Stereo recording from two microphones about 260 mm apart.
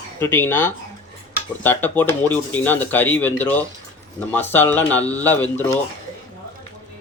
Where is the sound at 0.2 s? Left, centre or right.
Centre.